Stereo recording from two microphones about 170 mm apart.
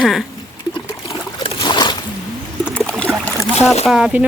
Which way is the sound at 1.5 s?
25° left (ahead or behind).